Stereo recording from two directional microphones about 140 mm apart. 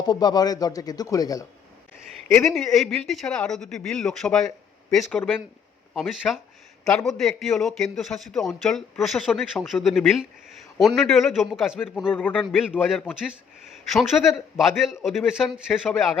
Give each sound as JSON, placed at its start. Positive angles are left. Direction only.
{"t": 0.0, "sound": "speech", "side_deg": 30}
{"t": 2.4, "sound": "a man's voice", "side_deg": 0}
{"t": 12.0, "sound": "a man's voice", "side_deg": 15}
{"t": 12.5, "sound": "a man's voice", "side_deg": -5}